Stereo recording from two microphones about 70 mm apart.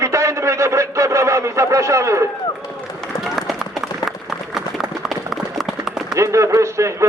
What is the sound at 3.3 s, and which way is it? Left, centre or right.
Run, centre.